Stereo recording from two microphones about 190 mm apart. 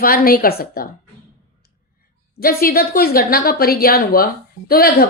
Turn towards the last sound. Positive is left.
turn(degrees=50)  # may be behind; listen again after turning